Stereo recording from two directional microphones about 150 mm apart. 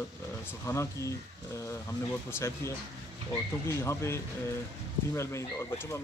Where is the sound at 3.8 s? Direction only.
15° left (ahead or behind).